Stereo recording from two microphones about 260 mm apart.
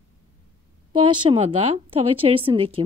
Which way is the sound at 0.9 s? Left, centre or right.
Centre.